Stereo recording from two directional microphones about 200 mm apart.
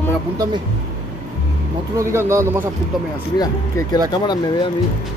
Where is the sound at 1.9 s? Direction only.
15° right (ahead or behind).